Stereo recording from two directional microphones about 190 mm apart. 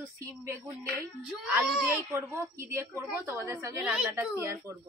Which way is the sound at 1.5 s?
10° right (ahead or behind).